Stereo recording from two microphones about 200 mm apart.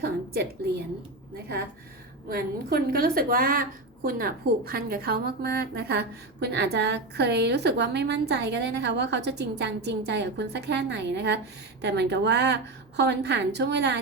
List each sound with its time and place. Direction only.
0.0 s a woman's voice: 55° right (ahead or behind)
2.3 s a woman's voice: 50° right (ahead or behind)